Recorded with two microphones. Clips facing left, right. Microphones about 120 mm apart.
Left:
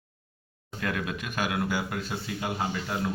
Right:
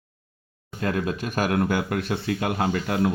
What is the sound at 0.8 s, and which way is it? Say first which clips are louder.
Speech: right 6 dB; 30° right (ahead or behind).